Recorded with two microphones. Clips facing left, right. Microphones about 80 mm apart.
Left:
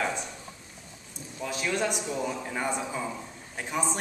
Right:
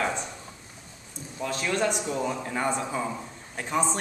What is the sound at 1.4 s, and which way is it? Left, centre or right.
A man's voice, centre.